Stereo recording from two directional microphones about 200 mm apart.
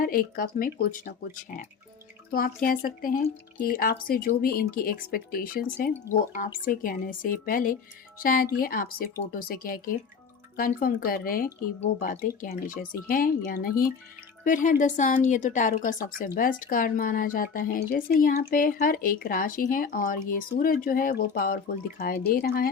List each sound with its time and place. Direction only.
0.0 s speech: 45° left (ahead or behind)
2.3 s speech: 45° left (ahead or behind)